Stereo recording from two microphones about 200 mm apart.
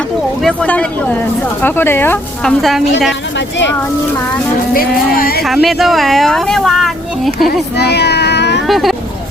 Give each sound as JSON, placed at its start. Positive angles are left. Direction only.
{"t": 0.4, "sound": "a woman's voice", "side_deg": 5}
{"t": 3.1, "sound": "speech", "side_deg": 65}
{"t": 4.7, "sound": "speech", "side_deg": 45}
{"t": 5.4, "sound": "a woman's voice", "side_deg": 0}
{"t": 7.8, "sound": "cat", "side_deg": 55}
{"t": 8.6, "sound": "a woman's voice", "side_deg": 0}